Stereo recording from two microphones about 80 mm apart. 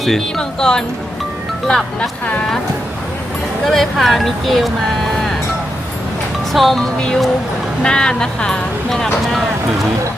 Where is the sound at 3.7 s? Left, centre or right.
Centre.